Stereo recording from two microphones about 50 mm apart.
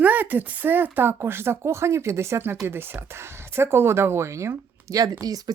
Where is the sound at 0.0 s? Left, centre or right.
Right.